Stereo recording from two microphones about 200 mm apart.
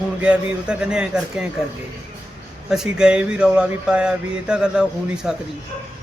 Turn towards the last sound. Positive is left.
turn(degrees=-5)  # may be behind; listen again after turning